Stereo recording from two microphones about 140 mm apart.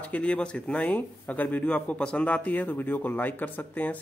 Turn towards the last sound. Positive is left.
turn(degrees=10)  # may be behind; listen again after turning